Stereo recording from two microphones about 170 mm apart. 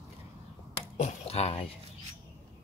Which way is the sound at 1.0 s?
35° left (ahead or behind).